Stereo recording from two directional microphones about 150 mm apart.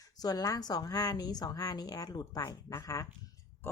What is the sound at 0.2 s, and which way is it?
A woman's voice, 25° left (ahead or behind).